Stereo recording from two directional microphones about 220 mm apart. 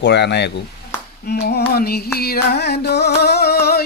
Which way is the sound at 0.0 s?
50° left (ahead or behind).